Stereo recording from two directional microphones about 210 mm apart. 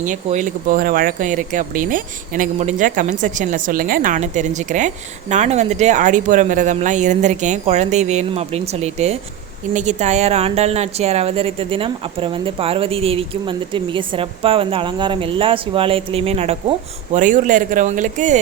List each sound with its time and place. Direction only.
0.0 s a woman's voice: 35° right (ahead or behind)